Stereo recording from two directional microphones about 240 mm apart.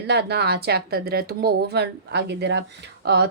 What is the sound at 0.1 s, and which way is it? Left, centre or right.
Speech, right.